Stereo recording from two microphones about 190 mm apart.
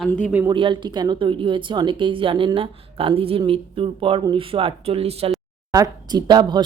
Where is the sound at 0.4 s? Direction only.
25° right (ahead or behind).